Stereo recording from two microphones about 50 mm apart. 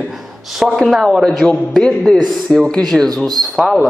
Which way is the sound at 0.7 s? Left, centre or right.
Centre.